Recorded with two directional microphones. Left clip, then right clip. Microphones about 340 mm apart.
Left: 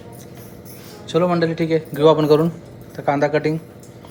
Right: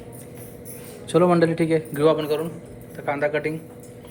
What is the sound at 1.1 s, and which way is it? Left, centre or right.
A man's voice, centre.